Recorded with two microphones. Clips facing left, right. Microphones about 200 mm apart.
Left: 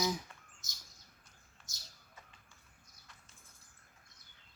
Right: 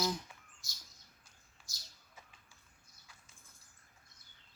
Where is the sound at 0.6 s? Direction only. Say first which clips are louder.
Even; 20° left (ahead or behind).